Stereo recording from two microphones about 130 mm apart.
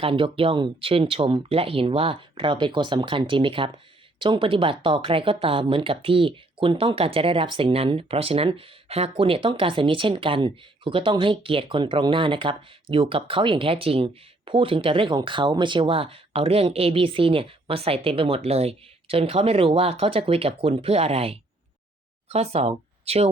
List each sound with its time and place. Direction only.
0.0 s speech: 45° right (ahead or behind)